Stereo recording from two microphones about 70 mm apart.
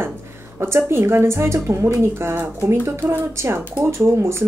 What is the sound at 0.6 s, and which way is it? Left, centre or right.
A woman's voice, right.